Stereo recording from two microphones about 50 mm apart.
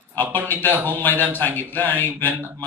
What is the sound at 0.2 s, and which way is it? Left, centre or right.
A man's voice, left.